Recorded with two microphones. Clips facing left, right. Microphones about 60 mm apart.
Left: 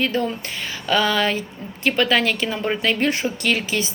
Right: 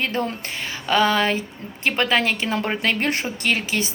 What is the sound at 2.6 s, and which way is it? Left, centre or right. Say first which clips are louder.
Speech: left 5 dB; right.